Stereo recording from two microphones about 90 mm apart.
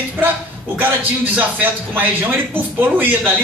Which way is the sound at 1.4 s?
20° right (ahead or behind).